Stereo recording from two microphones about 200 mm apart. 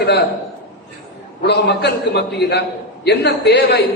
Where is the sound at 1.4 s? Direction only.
60° left (ahead or behind).